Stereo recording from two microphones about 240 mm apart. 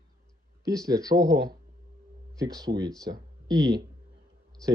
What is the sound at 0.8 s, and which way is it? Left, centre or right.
Speech, centre.